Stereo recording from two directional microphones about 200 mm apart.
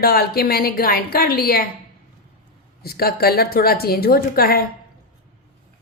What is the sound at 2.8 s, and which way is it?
Speech, 50° left (ahead or behind).